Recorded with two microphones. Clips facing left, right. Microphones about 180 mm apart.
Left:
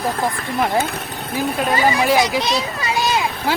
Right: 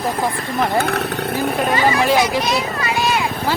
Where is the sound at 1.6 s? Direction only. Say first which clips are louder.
Even; centre (ahead or behind).